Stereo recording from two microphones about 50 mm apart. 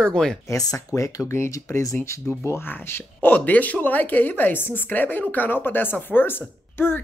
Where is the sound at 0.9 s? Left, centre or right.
Left.